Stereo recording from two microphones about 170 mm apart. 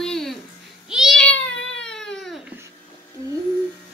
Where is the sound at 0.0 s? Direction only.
Centre (ahead or behind).